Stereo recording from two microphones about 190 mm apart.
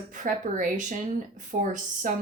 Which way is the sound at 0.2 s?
40° right (ahead or behind).